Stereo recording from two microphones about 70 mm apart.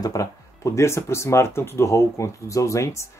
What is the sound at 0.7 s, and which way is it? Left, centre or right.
Speech, left.